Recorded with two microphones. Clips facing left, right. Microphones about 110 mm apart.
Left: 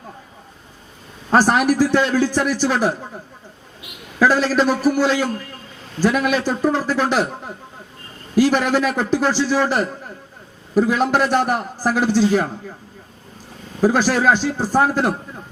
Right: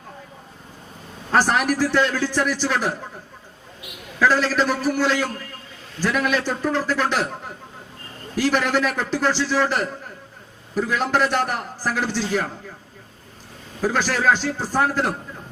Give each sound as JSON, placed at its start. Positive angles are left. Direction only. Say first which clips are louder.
{"t": 1.3, "sound": "a man's voice", "louder": "left 4 dB", "side_deg": 15}
{"t": 4.2, "sound": "a man's voice", "louder": "left 3 dB", "side_deg": 15}
{"t": 13.8, "sound": "a man's voice", "louder": "left 4 dB", "side_deg": 15}